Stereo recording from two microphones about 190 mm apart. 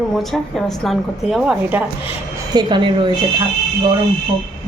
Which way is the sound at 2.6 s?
25° right (ahead or behind).